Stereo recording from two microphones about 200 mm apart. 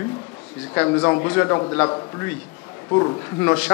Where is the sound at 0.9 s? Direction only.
25° left (ahead or behind).